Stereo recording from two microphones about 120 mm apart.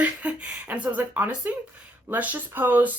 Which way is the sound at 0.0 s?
10° right (ahead or behind).